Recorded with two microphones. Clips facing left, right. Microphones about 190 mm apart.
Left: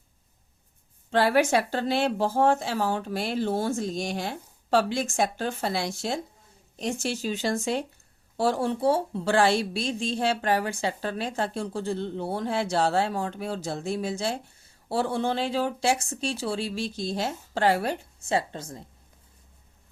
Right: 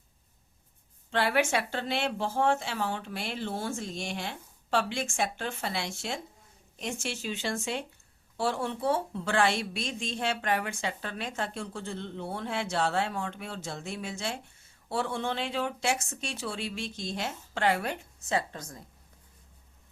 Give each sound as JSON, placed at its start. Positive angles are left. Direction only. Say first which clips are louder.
{"t": 1.1, "sound": "a woman's voice", "louder": "left 6 dB", "side_deg": 40}